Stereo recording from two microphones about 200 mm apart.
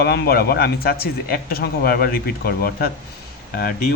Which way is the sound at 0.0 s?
50° left (ahead or behind).